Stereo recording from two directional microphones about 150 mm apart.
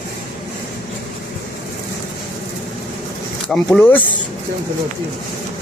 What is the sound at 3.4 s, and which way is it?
Speech, 5° left (ahead or behind).